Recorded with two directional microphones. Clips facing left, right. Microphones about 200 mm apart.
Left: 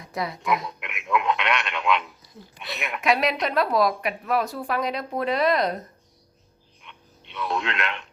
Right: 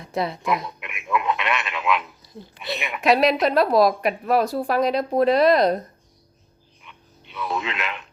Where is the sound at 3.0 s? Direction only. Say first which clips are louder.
Right 5 dB; 35° right (ahead or behind).